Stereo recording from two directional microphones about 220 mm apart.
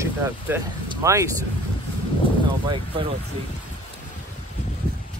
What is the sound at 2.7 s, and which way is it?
Speech, 25° right (ahead or behind).